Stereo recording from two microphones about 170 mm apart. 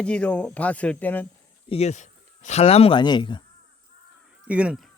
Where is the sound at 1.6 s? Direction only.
40° left (ahead or behind).